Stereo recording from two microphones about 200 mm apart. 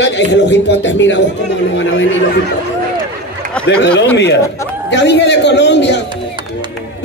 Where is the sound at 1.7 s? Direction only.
65° left (ahead or behind).